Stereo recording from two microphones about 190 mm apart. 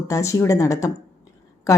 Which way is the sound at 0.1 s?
15° left (ahead or behind).